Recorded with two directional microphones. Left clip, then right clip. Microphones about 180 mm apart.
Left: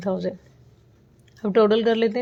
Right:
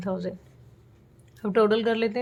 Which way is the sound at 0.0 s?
20° left (ahead or behind).